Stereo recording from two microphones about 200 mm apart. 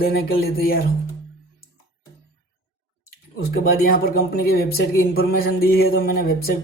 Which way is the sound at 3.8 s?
50° left (ahead or behind).